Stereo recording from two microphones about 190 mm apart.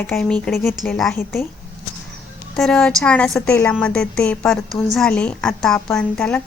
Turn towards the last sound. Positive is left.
turn(degrees=5)  # may be behind; listen again after turning